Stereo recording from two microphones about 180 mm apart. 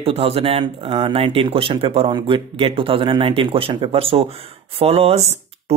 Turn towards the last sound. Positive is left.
turn(degrees=-35)  # may be behind; listen again after turning